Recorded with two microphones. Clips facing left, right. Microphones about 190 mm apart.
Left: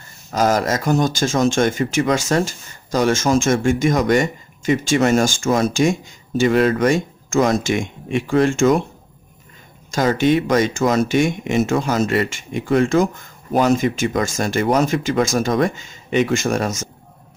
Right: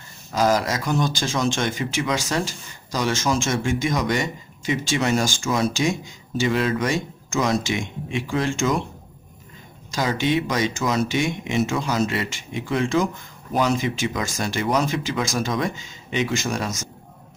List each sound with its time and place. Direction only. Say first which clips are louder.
0.3 s speech: left 3 dB; 50° left (ahead or behind)
9.8 s speech: left 6 dB; 50° left (ahead or behind)